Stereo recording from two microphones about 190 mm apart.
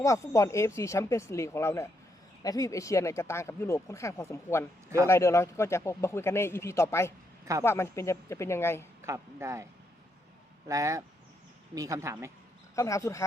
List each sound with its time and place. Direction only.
0.0 s speech: 15° left (ahead or behind)
9.0 s speech: 15° right (ahead or behind)
10.7 s speech: 15° right (ahead or behind)
12.7 s speech: 15° left (ahead or behind)